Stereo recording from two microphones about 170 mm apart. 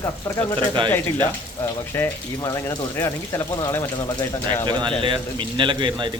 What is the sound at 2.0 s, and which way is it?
Speech, 15° left (ahead or behind).